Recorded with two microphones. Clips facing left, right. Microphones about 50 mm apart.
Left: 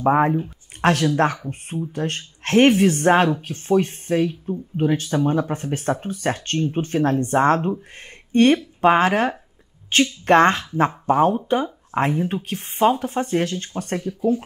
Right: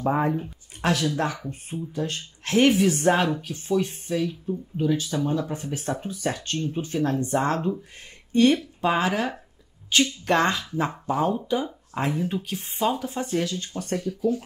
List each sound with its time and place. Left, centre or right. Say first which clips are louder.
0.0 s speech: left 6 dB; left
8.0 s a sound: left 3 dB; left
8.8 s speech: left 7 dB; left
13.9 s speech: left 3 dB; left